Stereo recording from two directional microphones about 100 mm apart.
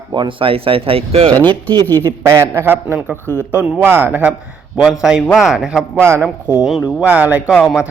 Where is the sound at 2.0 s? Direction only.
30° right (ahead or behind).